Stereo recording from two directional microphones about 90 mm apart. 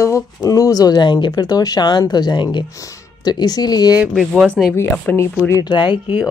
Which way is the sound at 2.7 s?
45° left (ahead or behind).